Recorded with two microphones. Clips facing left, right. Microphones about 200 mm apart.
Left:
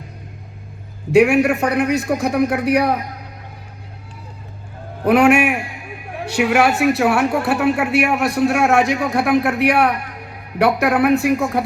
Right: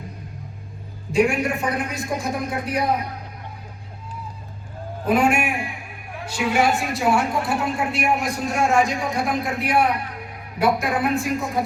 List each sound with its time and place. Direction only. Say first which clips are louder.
1.1 s a woman's voice: left 7 dB; 70° left (ahead or behind)
5.0 s a woman's voice: left 6 dB; 70° left (ahead or behind)